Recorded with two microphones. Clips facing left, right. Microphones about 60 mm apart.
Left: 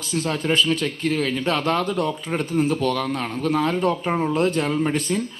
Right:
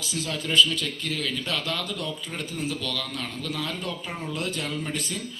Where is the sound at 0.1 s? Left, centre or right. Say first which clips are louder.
Left 6 dB; left.